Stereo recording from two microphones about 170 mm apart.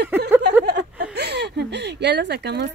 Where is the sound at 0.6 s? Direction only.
85° right.